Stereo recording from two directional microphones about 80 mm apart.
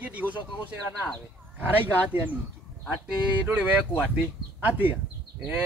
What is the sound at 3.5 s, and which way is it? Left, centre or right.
Speech, centre.